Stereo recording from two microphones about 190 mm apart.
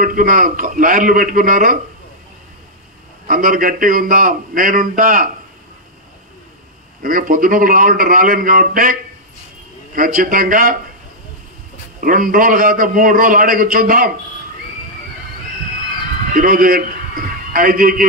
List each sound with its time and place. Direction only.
0.0 s a man's voice: 45° right (ahead or behind)
3.3 s a man's voice: 45° right (ahead or behind)
7.0 s a man's voice: 50° right (ahead or behind)
9.9 s a man's voice: 45° right (ahead or behind)
12.0 s a man's voice: 50° right (ahead or behind)
16.3 s a man's voice: 50° right (ahead or behind)